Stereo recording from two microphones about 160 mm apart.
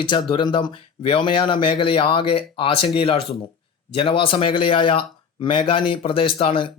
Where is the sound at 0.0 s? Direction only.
30° left (ahead or behind).